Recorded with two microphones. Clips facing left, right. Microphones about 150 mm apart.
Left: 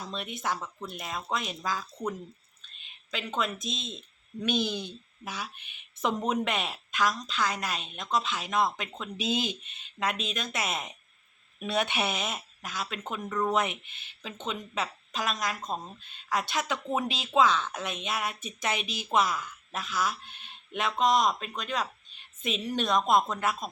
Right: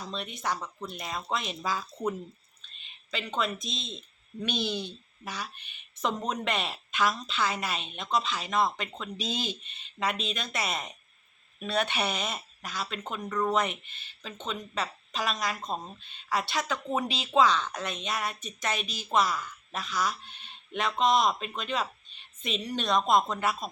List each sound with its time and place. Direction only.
0.4 s speech: 5° left (ahead or behind)
3.6 s speech: 50° left (ahead or behind)
3.9 s a sound: 5° left (ahead or behind)
4.5 s speech: 50° left (ahead or behind)
5.2 s speech: 5° left (ahead or behind)